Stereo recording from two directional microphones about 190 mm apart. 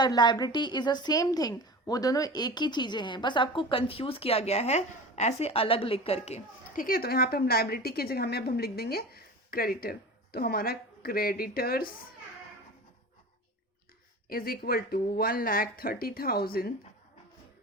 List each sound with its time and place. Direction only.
0.0 s a woman's voice: 25° left (ahead or behind)
6.8 s a woman's voice: 50° left (ahead or behind)
14.3 s a woman's voice: 50° left (ahead or behind)